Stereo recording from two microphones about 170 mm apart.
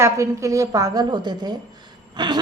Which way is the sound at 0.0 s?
15° right (ahead or behind).